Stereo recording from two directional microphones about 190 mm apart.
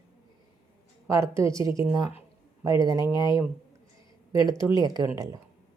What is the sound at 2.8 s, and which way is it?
Speech, 20° right (ahead or behind).